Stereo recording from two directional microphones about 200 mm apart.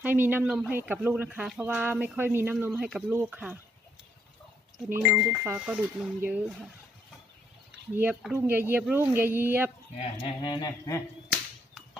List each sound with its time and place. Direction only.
0.0 s speech: 10° right (ahead or behind)
4.8 s speech: 10° right (ahead or behind)
8.0 s speech: 5° right (ahead or behind)
9.9 s speech: 30° left (ahead or behind)